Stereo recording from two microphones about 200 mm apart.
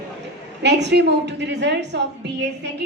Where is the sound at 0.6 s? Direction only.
60° right (ahead or behind).